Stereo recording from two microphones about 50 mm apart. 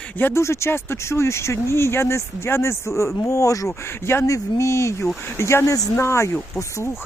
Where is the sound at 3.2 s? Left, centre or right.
Left.